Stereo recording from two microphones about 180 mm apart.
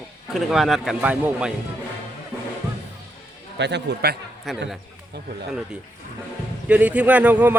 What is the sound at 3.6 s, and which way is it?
Speech, 75° right (ahead or behind).